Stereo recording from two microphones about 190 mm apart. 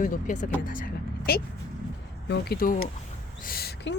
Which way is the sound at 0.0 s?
40° left (ahead or behind).